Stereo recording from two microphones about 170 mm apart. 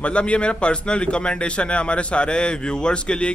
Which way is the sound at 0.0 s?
5° left (ahead or behind).